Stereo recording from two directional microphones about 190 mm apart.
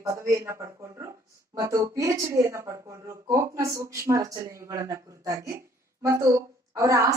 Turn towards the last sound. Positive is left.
turn(degrees=-15)  # may be behind; listen again after turning